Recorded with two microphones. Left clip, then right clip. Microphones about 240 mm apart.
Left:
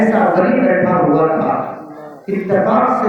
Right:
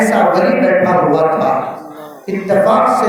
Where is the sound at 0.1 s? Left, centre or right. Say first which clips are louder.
Right 2 dB; right.